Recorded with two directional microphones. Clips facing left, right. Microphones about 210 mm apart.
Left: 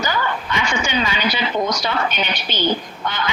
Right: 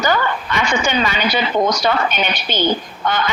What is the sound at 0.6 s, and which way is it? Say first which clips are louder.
A woman's voice: right 4 dB; 50° right (ahead or behind).